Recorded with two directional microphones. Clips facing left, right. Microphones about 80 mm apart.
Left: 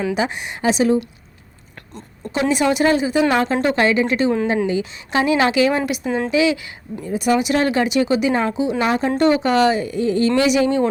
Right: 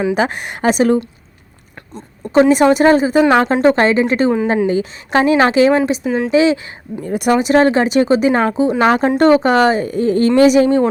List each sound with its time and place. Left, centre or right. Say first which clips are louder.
0.1 s a woman's voice: right 5 dB; right
2.3 s a woman's voice: right 8 dB; right
6.1 s a woman's voice: right 4 dB; centre
6.3 s a woman's voice: right 5 dB; right
7.0 s speech: right 3 dB; right
7.3 s a woman's voice: right 7 dB; right